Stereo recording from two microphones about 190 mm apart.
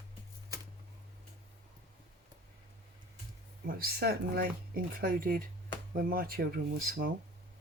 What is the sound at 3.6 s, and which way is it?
Speech, 55° right (ahead or behind).